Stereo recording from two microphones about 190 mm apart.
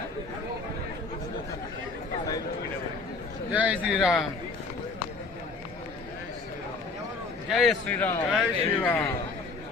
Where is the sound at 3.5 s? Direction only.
10° right (ahead or behind).